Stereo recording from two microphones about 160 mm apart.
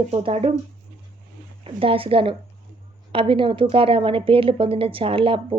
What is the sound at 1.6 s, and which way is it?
A woman's voice, 35° right (ahead or behind).